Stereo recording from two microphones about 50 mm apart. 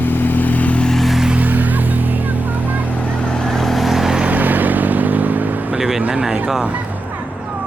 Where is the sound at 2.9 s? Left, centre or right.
Left; by 4.2 s centre.